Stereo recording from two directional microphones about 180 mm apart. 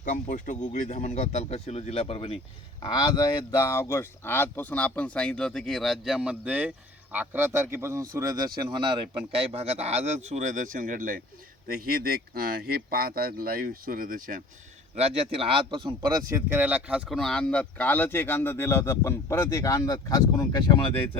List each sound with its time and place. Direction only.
0.0 s speech: 45° left (ahead or behind); by 14.4 s 50° right (ahead or behind)
14.9 s speech: 35° right (ahead or behind); by 21.2 s 25° left (ahead or behind)